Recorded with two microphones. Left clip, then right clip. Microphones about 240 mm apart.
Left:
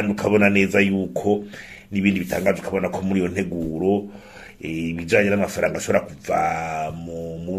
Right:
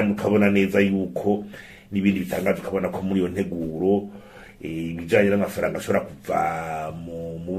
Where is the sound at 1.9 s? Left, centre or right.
Left.